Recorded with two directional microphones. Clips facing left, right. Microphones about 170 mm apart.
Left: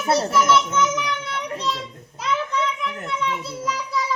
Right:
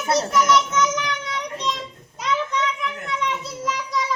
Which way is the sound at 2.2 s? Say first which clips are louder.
Even; 5° left (ahead or behind).